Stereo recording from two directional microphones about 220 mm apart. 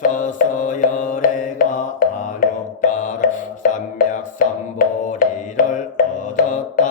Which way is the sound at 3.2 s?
40° left (ahead or behind).